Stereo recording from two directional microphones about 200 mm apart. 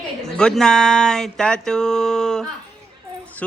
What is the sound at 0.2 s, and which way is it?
Speech, 5° left (ahead or behind).